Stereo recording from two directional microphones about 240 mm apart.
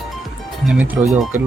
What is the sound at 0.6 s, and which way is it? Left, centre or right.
Speech, centre.